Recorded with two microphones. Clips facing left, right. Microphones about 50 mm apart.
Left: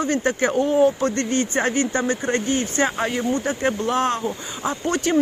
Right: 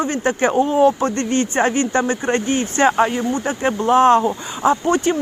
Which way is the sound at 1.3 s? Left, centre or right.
Right.